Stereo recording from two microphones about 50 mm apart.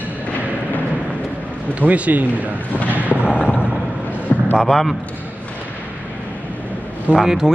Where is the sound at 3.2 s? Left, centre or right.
Right.